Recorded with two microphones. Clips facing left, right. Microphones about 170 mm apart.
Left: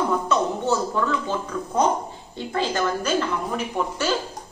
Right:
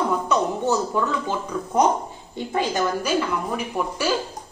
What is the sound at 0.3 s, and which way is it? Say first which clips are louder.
Speech: right 1 dB; 15° right (ahead or behind).